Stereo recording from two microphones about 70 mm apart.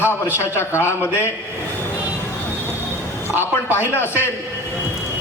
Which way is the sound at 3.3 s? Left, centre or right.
Left.